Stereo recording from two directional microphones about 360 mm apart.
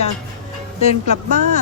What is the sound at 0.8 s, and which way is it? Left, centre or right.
Speech, centre.